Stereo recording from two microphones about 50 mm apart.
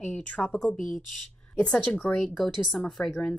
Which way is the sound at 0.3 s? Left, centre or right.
Left.